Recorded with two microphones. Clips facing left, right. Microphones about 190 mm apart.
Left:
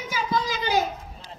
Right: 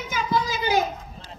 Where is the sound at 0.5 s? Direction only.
10° right (ahead or behind).